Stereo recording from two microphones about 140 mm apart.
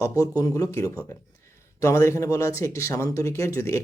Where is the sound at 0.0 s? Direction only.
25° left (ahead or behind).